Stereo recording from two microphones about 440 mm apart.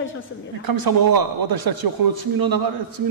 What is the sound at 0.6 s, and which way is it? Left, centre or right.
Speech, right.